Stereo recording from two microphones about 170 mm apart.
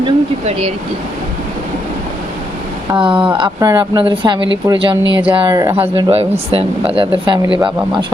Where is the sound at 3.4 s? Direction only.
20° right (ahead or behind).